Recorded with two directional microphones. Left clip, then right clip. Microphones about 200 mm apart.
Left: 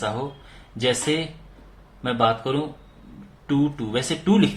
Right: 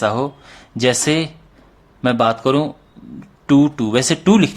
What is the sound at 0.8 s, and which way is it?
Speech, 50° right (ahead or behind).